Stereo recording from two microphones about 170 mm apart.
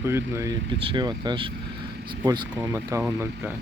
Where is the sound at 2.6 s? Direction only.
20° right (ahead or behind).